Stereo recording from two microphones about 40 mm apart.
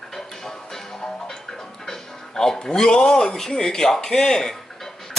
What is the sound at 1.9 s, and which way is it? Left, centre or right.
Speech, centre.